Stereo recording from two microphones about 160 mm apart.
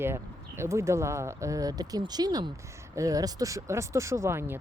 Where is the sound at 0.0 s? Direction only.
15° right (ahead or behind).